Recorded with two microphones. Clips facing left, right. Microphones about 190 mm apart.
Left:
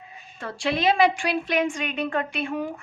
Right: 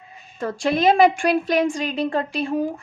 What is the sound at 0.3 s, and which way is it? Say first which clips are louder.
A woman's voice: right 5 dB; 40° right (ahead or behind).